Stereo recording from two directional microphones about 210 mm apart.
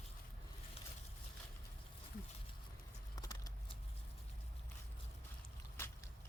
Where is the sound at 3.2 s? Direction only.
15° left (ahead or behind).